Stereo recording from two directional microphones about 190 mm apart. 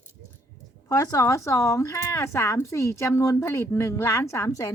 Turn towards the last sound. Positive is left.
turn(degrees=20)  # may be behind; listen again after turning